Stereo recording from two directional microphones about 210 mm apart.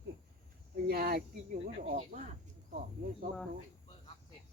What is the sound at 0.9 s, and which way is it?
Speech, 50° right (ahead or behind).